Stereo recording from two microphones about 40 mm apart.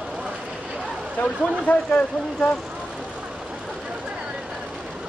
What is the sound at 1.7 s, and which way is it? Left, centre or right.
Speech, left.